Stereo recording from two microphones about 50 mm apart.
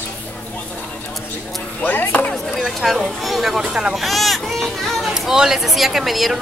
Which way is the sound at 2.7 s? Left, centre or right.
Centre.